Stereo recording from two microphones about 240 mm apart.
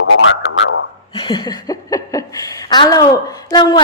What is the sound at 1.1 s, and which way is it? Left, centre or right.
Speech, centre.